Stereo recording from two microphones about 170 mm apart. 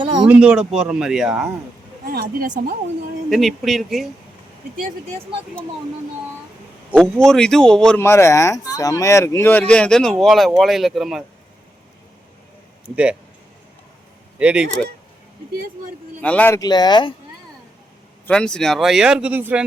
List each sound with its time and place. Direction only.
0.0 s a sound: 25° right (ahead or behind)
0.3 s speech: 5° right (ahead or behind)
2.0 s speech: 60° right (ahead or behind)
3.2 s speech: centre (ahead or behind)
7.3 s speech: 5° left (ahead or behind)
14.3 s speech: 5° right (ahead or behind)
16.2 s speech: 10° left (ahead or behind)
16.6 s speech: 25° left (ahead or behind)
18.3 s speech: 5° left (ahead or behind)